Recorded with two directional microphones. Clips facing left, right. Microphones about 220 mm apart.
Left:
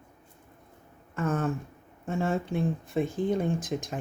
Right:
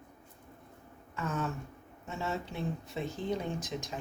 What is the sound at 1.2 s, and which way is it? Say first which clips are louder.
Speech: left 7 dB; 50° left (ahead or behind).